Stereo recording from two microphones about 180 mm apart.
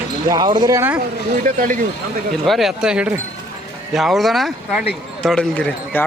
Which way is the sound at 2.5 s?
Centre (ahead or behind).